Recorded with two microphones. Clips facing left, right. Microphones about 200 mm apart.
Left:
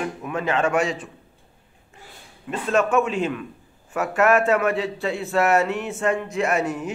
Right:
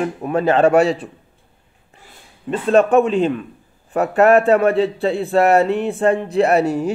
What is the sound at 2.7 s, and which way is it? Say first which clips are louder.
Speech: right 7 dB; 35° right (ahead or behind).